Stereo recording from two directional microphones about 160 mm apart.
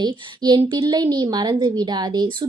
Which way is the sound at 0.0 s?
25° right (ahead or behind).